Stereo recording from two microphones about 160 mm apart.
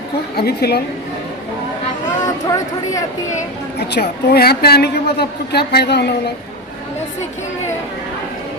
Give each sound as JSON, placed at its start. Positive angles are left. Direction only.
{"t": 0.3, "sound": "a woman's voice", "side_deg": 80}
{"t": 2.2, "sound": "speech", "side_deg": 20}
{"t": 3.8, "sound": "a woman's voice", "side_deg": 90}